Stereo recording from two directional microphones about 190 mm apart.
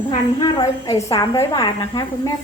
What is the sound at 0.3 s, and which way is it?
A woman's voice, 25° left (ahead or behind).